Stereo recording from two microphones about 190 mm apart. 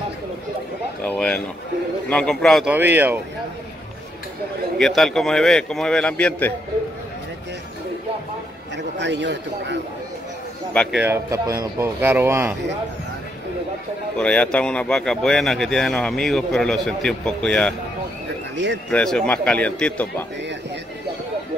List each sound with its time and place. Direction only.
1.0 s speech: 5° left (ahead or behind)
2.7 s speech: 10° right (ahead or behind)
4.7 s speech: centre (ahead or behind)
8.9 s a man's voice: 65° right (ahead or behind)
10.7 s speech: 5° left (ahead or behind)
11.0 s speech: 15° right (ahead or behind)
14.1 s speech: 5° left (ahead or behind)
18.9 s speech: 5° left (ahead or behind)